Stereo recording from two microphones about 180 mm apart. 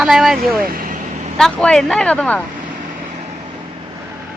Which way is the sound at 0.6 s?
55° right (ahead or behind).